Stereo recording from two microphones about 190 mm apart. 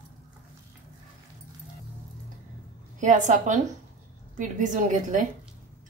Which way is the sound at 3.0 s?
40° right (ahead or behind).